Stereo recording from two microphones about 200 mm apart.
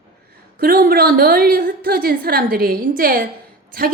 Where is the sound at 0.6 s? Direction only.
50° right (ahead or behind).